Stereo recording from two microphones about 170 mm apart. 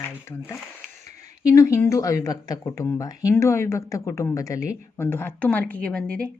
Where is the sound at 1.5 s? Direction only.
20° left (ahead or behind).